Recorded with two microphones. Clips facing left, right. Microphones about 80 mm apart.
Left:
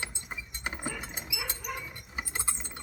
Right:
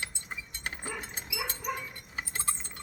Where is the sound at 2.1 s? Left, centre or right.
Centre.